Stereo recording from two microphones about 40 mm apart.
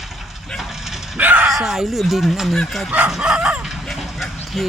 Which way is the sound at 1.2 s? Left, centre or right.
Right.